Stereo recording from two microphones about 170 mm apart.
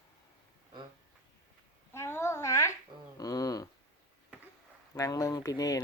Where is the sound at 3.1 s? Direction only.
20° left (ahead or behind).